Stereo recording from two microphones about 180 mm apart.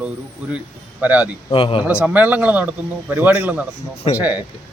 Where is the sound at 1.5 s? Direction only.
30° left (ahead or behind).